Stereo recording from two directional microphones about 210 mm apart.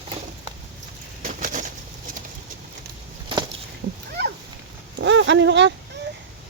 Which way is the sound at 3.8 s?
50° right (ahead or behind).